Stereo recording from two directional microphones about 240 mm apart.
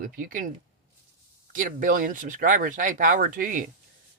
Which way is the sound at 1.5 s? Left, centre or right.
Right.